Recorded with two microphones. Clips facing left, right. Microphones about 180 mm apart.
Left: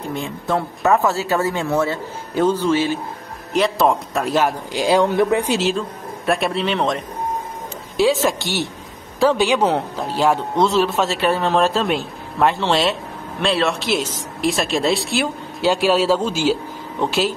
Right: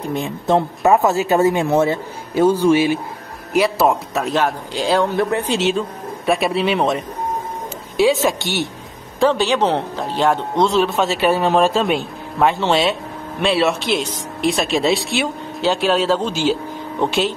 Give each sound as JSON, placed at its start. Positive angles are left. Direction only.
{"t": 0.1, "sound": "speech", "side_deg": -20}
{"t": 5.6, "sound": "speech", "side_deg": 0}
{"t": 8.0, "sound": "speech", "side_deg": 0}